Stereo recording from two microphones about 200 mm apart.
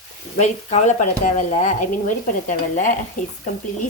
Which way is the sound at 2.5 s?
40° left (ahead or behind).